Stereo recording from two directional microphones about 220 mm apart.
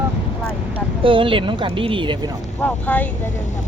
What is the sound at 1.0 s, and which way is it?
Speech, 25° right (ahead or behind).